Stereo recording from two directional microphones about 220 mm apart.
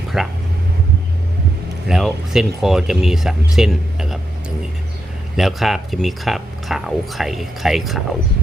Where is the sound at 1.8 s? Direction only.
Centre (ahead or behind).